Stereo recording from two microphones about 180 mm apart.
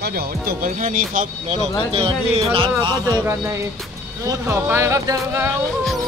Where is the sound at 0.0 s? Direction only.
55° right (ahead or behind); by 3.2 s 25° right (ahead or behind).